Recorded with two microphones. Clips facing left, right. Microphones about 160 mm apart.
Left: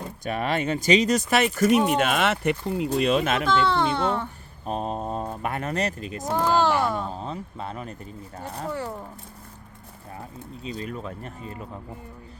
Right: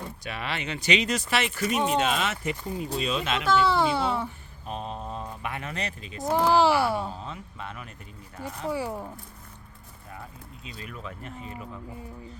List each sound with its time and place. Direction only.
0.3 s speech: 45° left (ahead or behind)
1.7 s speech: 5° left (ahead or behind)
2.0 s speech: 55° left (ahead or behind)
3.4 s a child's voice: 5° right (ahead or behind)
4.6 s speech: 40° left (ahead or behind)
6.3 s a child's voice: 10° right (ahead or behind)
7.1 s speech: 40° left (ahead or behind)
8.7 s a child's voice: 10° right (ahead or behind)
10.6 s speech: 35° left (ahead or behind)